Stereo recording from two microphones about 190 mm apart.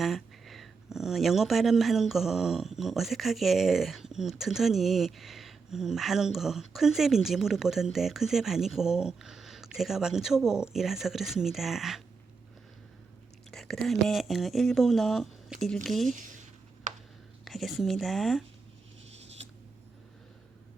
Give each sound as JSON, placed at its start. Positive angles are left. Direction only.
{"t": 0.0, "sound": "speech", "side_deg": 0}
{"t": 13.5, "sound": "speech", "side_deg": 0}
{"t": 16.1, "sound": "speech", "side_deg": -45}
{"t": 16.9, "sound": "a sound", "side_deg": -40}
{"t": 17.4, "sound": "speech", "side_deg": 0}